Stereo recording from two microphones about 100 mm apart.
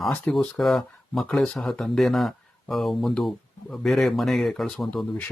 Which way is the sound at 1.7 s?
5° left (ahead or behind).